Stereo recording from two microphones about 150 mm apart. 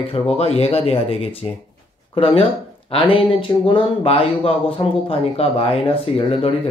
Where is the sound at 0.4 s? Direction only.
40° left (ahead or behind).